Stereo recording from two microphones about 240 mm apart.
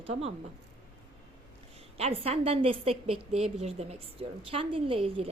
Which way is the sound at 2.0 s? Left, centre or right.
Right.